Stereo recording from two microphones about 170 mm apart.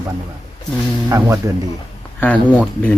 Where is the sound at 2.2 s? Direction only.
10° left (ahead or behind).